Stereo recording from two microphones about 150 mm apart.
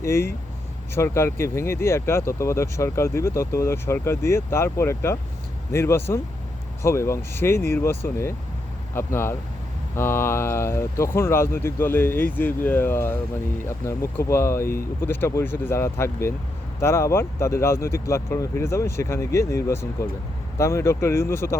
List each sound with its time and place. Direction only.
0.0 s speech: 15° left (ahead or behind)